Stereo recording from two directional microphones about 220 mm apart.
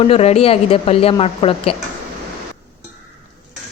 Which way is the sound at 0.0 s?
30° left (ahead or behind).